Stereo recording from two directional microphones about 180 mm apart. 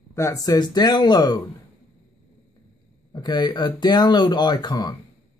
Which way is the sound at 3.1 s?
25° left (ahead or behind).